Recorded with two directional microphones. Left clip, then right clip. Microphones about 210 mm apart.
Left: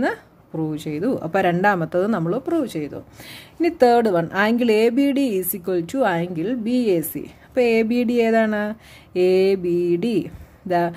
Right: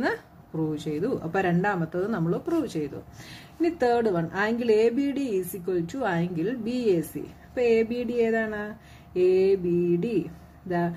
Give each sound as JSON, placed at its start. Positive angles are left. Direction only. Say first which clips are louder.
{"t": 0.7, "sound": "speech", "louder": "left 5 dB", "side_deg": 35}